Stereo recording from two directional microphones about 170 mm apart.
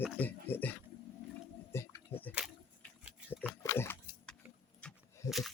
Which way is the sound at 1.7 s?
15° left (ahead or behind).